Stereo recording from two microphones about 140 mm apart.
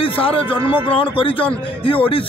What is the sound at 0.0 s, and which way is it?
A man's voice, 40° left (ahead or behind).